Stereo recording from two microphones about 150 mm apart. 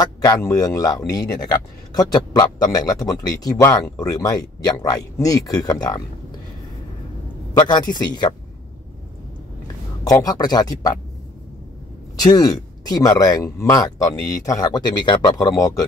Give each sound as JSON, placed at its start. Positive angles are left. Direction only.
{"t": 0.0, "sound": "speech", "side_deg": 25}
{"t": 7.5, "sound": "speech", "side_deg": 30}
{"t": 10.0, "sound": "speech", "side_deg": 25}
{"t": 12.2, "sound": "speech", "side_deg": 25}